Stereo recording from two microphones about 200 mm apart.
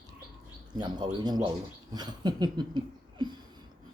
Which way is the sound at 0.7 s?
20° right (ahead or behind).